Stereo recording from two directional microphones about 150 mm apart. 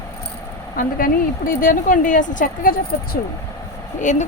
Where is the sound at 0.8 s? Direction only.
70° left (ahead or behind).